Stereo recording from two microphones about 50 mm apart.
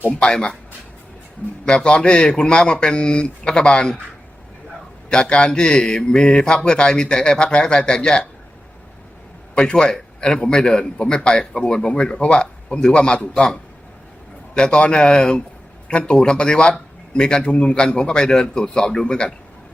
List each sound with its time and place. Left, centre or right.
0.2 s a man's voice: centre
1.6 s speech: centre
5.0 s a man's voice: centre
9.6 s a man's voice: centre